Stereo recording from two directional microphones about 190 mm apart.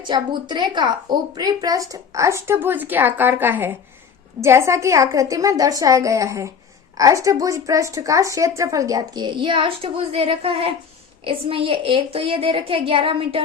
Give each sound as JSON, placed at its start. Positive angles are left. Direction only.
{"t": 0.1, "sound": "a woman's voice", "side_deg": -25}